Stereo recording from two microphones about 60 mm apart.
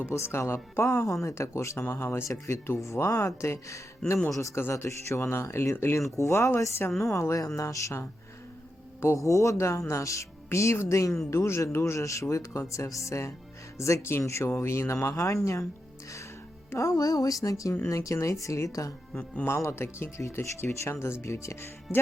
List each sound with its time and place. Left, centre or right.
0.1 s speech: left
2.8 s speech: left
4.0 s a man's voice: centre
4.7 s speech: left
6.2 s speech: left
6.6 s speech: left
7.4 s speech: left
9.1 s speech: left
15.1 s speech: left
16.7 s a woman's voice: left
19.5 s speech: left
21.2 s speech: left